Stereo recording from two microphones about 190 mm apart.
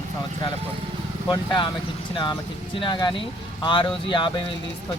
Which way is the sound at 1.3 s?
25° left (ahead or behind).